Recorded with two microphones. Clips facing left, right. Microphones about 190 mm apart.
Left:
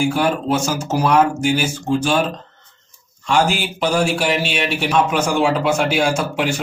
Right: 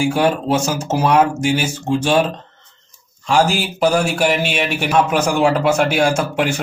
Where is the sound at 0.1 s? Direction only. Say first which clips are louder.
Right 2 dB; 35° right (ahead or behind).